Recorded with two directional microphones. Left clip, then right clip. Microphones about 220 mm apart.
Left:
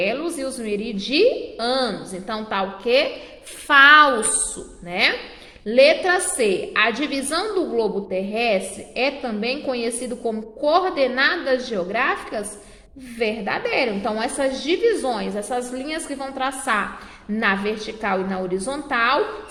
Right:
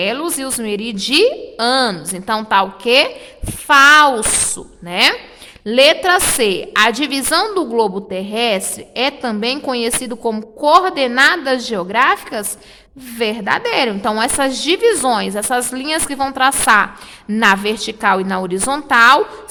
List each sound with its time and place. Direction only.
0.0 s a woman's voice: 35° right (ahead or behind)